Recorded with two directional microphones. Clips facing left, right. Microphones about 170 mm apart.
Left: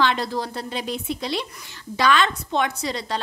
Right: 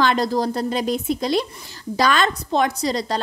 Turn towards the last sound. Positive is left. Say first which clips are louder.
# right 5 dB
turn(degrees=-40)  # may be behind; listen again after turning